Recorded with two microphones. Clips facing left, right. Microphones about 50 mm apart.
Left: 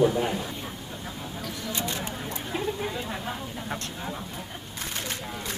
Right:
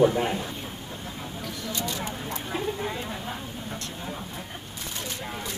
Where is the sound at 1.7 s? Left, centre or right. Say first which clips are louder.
Even; left.